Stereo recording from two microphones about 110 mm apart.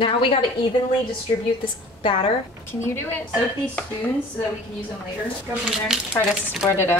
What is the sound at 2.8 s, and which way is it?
Speech, 20° left (ahead or behind).